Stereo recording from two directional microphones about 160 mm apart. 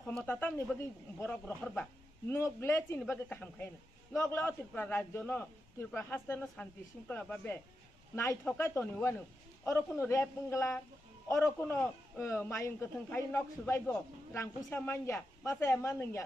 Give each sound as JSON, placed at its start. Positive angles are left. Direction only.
{"t": 0.0, "sound": "a man's voice", "side_deg": 5}